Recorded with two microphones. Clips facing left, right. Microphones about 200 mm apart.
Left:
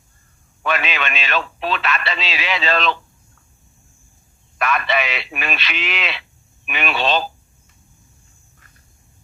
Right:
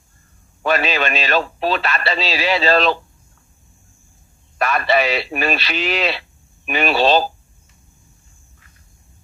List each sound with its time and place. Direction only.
0.6 s a man's voice: 35° right (ahead or behind)
4.6 s a man's voice: 35° right (ahead or behind)